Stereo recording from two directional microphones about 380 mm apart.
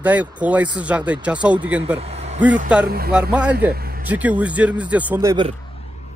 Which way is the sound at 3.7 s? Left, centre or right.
Right.